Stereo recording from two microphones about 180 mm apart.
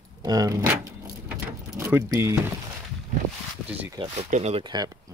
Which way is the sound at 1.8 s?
10° right (ahead or behind).